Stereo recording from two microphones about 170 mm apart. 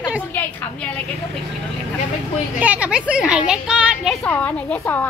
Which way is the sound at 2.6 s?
10° right (ahead or behind).